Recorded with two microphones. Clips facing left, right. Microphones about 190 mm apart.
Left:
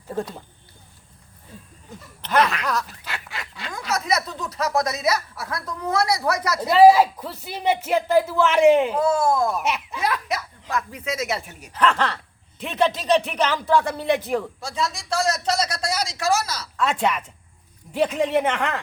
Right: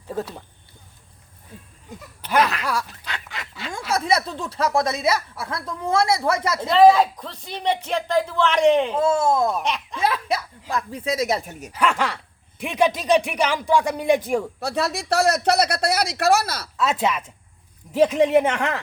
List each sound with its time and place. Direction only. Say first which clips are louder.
0.2 s speech: left 1 dB; 5° right (ahead or behind)
2.2 s laughter: even; 5° right (ahead or behind)
2.8 s goose: even; 5° left (ahead or behind)
3.7 s speech: right 3 dB; 30° right (ahead or behind)
6.7 s speech: left 1 dB; 5° left (ahead or behind)
9.0 s speech: right 1 dB; 25° right (ahead or behind)
9.6 s speech: even; 5° left (ahead or behind)
10.0 s speech: right 5 dB; 30° right (ahead or behind)
11.7 s speech: left 1 dB; 10° right (ahead or behind)
14.6 s speech: right 3 dB; 65° right (ahead or behind)
16.7 s speech: even; 5° right (ahead or behind)